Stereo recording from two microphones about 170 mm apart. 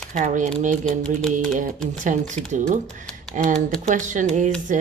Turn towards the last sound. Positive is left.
turn(degrees=-50)  # may be behind; listen again after turning